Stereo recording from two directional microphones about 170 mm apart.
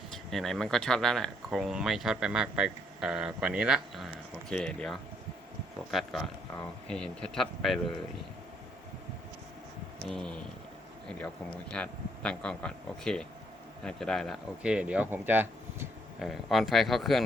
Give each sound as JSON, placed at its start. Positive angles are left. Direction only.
{"t": 0.1, "sound": "speech", "side_deg": 0}
{"t": 10.1, "sound": "speech", "side_deg": 5}
{"t": 11.7, "sound": "speech", "side_deg": 5}
{"t": 16.2, "sound": "speech", "side_deg": 0}